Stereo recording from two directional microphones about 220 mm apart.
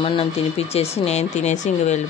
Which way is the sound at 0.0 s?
25° left (ahead or behind).